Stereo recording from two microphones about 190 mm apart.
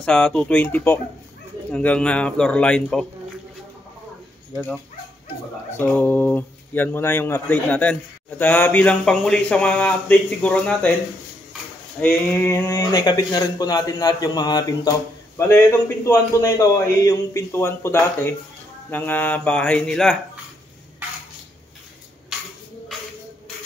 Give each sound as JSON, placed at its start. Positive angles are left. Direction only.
{"t": 0.0, "sound": "a man's voice", "side_deg": 5}
{"t": 5.8, "sound": "speech", "side_deg": 10}
{"t": 12.0, "sound": "speech", "side_deg": 10}
{"t": 22.3, "sound": "tambourine", "side_deg": -5}